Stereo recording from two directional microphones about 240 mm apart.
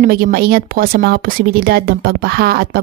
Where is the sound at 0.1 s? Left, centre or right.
Right.